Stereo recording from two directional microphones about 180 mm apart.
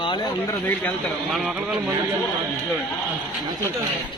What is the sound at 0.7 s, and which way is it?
Speech, 5° left (ahead or behind).